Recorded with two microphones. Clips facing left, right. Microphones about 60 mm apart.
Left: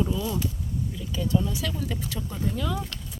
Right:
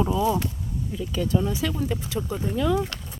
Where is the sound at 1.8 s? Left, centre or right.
Centre.